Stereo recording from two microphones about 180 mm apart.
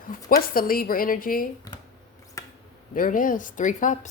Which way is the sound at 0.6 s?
55° left (ahead or behind).